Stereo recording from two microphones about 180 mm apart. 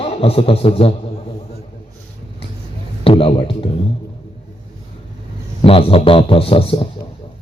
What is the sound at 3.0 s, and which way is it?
Speech, 30° left (ahead or behind).